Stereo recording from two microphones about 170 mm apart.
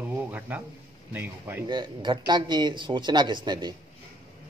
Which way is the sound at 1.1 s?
10° right (ahead or behind).